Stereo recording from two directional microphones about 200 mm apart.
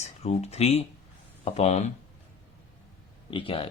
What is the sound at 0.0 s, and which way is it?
Speech, 30° left (ahead or behind).